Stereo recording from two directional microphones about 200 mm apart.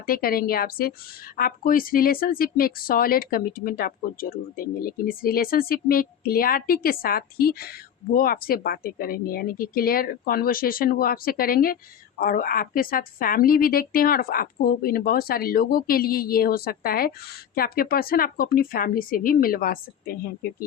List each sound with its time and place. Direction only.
0.0 s a woman's voice: 45° left (ahead or behind)